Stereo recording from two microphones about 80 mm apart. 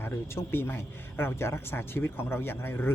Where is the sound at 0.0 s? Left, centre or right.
Left.